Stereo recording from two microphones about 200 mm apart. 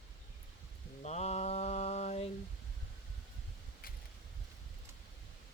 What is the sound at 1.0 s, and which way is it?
Mantra, 35° left (ahead or behind).